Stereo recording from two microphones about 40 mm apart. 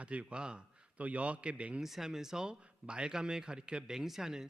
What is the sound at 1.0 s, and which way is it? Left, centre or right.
Speech, right.